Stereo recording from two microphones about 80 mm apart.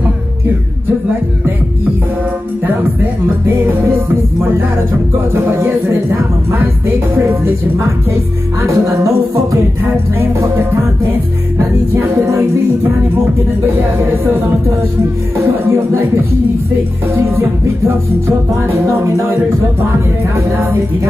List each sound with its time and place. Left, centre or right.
2.6 s music: right
5.3 s music: right
8.6 s music: right
11.5 s music: right
15.4 s music: right